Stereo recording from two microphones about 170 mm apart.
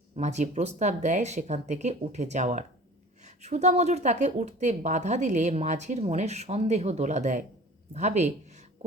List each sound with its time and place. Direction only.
0.2 s speech: 40° right (ahead or behind)